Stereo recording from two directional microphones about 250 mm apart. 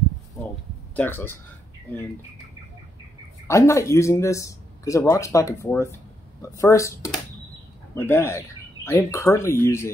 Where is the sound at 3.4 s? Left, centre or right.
Centre.